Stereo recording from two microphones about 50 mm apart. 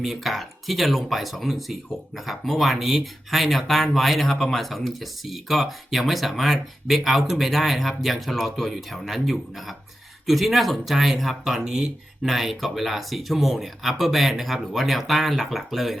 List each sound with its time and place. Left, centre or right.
0.0 s speech: centre
12.3 s speech: centre